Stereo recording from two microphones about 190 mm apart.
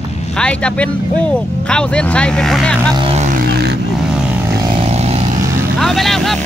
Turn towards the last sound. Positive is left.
turn(degrees=0)  # may be behind; listen again after turning